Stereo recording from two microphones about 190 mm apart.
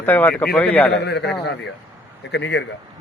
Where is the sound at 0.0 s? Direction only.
10° left (ahead or behind).